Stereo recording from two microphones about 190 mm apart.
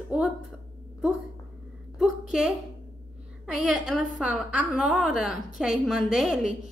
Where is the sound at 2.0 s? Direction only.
5° right (ahead or behind).